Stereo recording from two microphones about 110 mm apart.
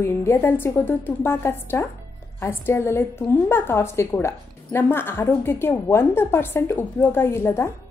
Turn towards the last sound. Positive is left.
turn(degrees=20)  # may be behind; listen again after turning